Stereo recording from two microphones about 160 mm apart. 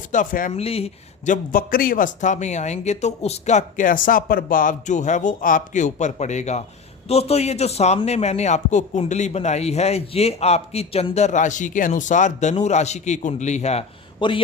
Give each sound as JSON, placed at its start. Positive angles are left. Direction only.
{"t": 0.1, "sound": "speech", "side_deg": 55}
{"t": 0.6, "sound": "speech", "side_deg": 40}
{"t": 1.3, "sound": "a man's voice", "side_deg": 65}
{"t": 14.2, "sound": "speech", "side_deg": 30}